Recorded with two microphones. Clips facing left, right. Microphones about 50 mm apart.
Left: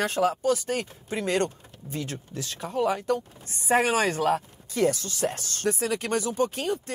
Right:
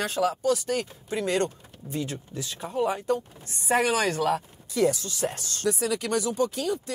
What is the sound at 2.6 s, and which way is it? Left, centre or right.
Speech, right.